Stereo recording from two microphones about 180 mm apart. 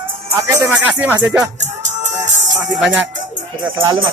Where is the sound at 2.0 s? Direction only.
40° right (ahead or behind).